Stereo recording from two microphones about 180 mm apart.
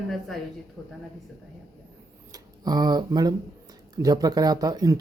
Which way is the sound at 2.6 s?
20° right (ahead or behind).